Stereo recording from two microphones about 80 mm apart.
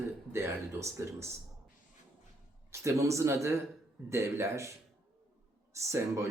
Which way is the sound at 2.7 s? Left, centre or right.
Right.